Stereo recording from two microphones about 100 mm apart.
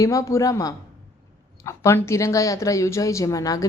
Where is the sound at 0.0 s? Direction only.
35° left (ahead or behind).